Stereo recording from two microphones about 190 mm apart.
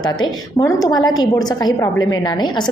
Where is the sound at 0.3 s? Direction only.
15° left (ahead or behind).